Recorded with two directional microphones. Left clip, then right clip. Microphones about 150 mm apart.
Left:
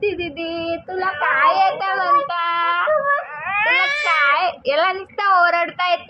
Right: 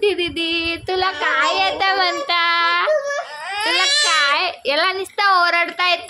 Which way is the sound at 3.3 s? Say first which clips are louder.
Right 1 dB; 60° right (ahead or behind).